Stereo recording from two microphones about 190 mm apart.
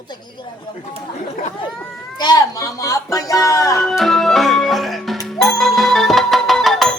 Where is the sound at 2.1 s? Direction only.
20° left (ahead or behind).